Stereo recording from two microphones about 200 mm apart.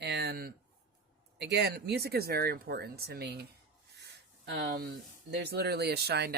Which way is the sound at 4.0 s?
50° right (ahead or behind).